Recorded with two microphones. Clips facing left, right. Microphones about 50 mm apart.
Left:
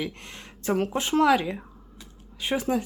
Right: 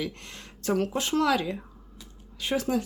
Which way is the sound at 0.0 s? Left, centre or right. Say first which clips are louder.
Left 1 dB; left.